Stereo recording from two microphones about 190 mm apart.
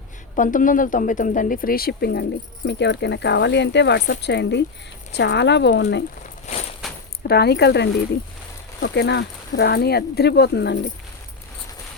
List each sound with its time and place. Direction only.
0.3 s speech: 45° left (ahead or behind)
2.6 s speech: 65° left (ahead or behind)
6.4 s a sound: 35° left (ahead or behind)
7.3 s speech: 60° left (ahead or behind)